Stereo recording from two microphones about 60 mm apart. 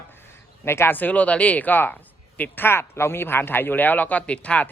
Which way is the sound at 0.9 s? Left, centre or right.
Left.